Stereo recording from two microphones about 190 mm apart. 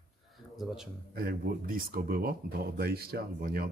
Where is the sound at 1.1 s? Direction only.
50° right (ahead or behind).